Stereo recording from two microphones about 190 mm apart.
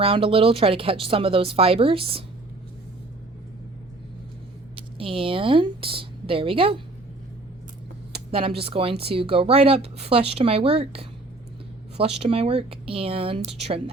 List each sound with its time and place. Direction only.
0.0 s speech: 30° right (ahead or behind)
4.9 s speech: 30° right (ahead or behind)
8.1 s speech: 30° right (ahead or behind)
12.2 s speech: 30° right (ahead or behind)